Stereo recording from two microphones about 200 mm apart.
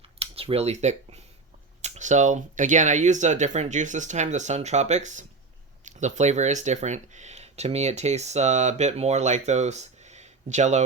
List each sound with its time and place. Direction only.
0.2 s speech: 30° right (ahead or behind)